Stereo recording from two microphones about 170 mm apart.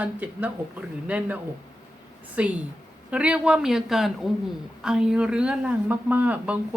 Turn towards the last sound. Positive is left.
turn(degrees=-10)  # may be behind; listen again after turning